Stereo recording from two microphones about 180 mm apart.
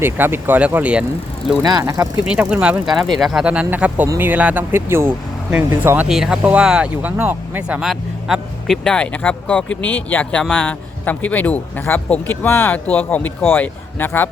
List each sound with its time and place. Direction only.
0.0 s speech: 10° right (ahead or behind)
1.6 s speech: 20° right (ahead or behind)
2.2 s speech: 5° right (ahead or behind); by 14.3 s 10° left (ahead or behind)